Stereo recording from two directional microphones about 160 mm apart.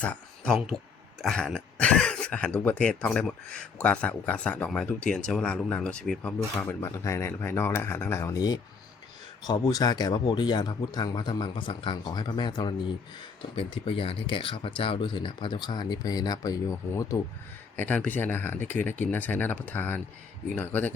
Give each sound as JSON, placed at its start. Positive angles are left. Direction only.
{"t": 0.0, "sound": "speech", "side_deg": 5}
{"t": 6.8, "sound": "speech", "side_deg": 20}